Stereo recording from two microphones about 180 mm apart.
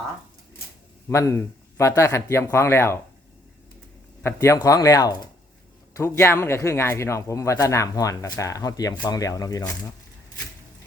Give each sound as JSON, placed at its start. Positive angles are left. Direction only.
{"t": 1.1, "sound": "speech", "side_deg": 15}
{"t": 4.2, "sound": "speech", "side_deg": 15}